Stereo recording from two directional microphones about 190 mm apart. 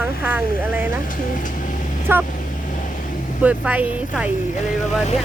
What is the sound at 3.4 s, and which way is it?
Speech, 10° right (ahead or behind).